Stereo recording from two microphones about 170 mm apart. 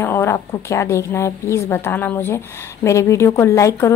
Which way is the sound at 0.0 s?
15° left (ahead or behind).